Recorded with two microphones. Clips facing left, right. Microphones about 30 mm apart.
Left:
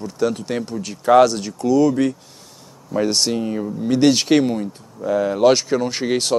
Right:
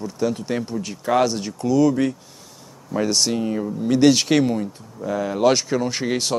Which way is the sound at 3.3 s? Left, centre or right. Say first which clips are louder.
Left 1 dB; centre.